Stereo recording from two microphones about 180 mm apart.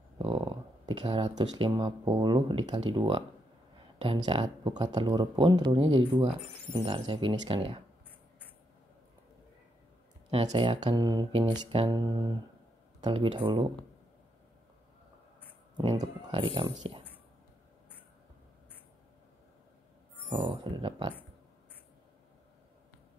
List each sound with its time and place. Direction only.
0.2 s speech: 25° right (ahead or behind)
10.5 s speech: 25° right (ahead or behind)
15.8 s speech: 20° right (ahead or behind)
20.4 s speech: 25° right (ahead or behind)